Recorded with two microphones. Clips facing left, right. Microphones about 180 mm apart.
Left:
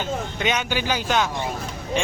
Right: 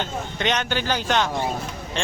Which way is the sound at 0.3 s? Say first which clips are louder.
Right 2 dB; 5° left (ahead or behind).